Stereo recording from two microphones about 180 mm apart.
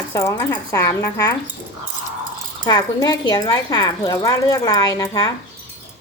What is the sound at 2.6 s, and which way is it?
Speech, 20° left (ahead or behind).